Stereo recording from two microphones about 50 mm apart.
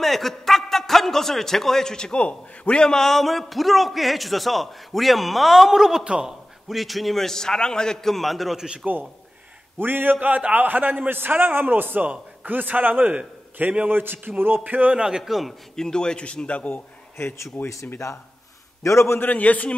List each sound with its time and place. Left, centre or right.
0.0 s a man's voice: centre
2.1 s a man's voice: left; by 6.0 s centre
6.0 s speech: centre
6.7 s a man's voice: centre
8.5 s speech: centre
9.8 s a man's voice: right
10.2 s a man's voice: right
15.0 s a man's voice: centre
15.2 s a man's voice: centre
15.7 s a man's voice: centre; by 16.8 s left
17.9 s a man's voice: left
19.1 s a man's voice: left